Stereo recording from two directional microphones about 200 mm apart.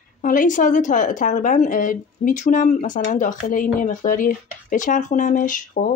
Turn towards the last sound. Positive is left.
turn(degrees=40)  # may be behind; listen again after turning